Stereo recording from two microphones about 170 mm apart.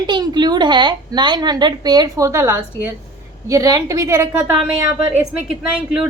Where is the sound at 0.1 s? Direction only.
25° right (ahead or behind).